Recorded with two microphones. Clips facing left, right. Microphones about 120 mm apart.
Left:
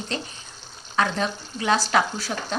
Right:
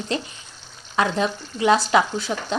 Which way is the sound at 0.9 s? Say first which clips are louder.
Right 2 dB; 20° right (ahead or behind).